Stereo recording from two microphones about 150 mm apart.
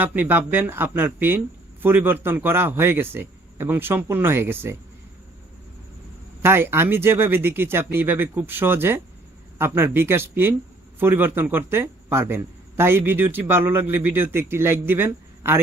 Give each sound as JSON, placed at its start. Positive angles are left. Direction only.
{"t": 0.0, "sound": "a man's voice", "side_deg": -10}
{"t": 6.4, "sound": "a man's voice", "side_deg": -15}